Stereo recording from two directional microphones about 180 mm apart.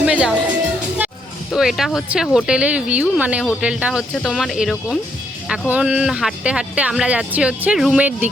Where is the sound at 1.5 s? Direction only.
Centre (ahead or behind).